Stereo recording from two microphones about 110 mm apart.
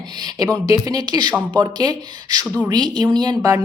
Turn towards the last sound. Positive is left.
turn(degrees=-30)  # may be behind; listen again after turning